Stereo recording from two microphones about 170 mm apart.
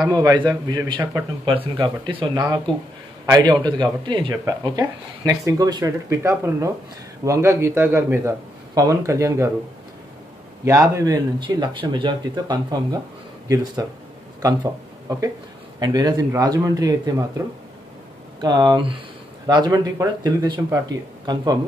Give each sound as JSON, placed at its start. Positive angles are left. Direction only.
{"t": 0.1, "sound": "a man's voice", "side_deg": -20}
{"t": 10.6, "sound": "speech", "side_deg": -20}
{"t": 14.4, "sound": "speech", "side_deg": -20}